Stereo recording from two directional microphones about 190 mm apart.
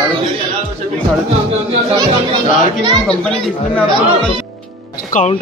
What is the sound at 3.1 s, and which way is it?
Speech, 5° left (ahead or behind).